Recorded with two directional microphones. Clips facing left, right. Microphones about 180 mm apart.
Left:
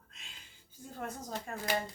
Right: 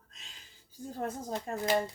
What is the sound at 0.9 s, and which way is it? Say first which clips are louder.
Speech: right 5 dB; 35° right (ahead or behind).